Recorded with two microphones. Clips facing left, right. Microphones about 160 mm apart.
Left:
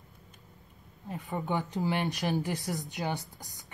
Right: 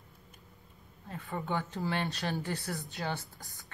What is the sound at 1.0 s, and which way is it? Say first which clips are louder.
Speech: left 3 dB; 15° left (ahead or behind).